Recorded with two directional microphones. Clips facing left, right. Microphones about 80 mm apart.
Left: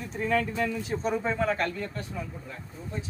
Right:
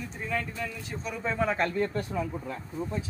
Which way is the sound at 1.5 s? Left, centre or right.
Right.